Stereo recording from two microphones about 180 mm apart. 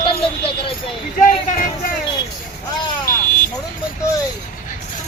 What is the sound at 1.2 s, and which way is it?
Speech, 45° left (ahead or behind).